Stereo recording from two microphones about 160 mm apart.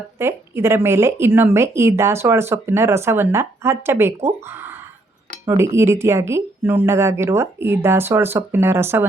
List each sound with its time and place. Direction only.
0.2 s speech: 15° right (ahead or behind)
4.4 s a sound: 15° right (ahead or behind)
5.5 s speech: 15° right (ahead or behind)